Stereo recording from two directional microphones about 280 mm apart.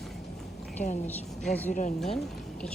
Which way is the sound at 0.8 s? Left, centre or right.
Left.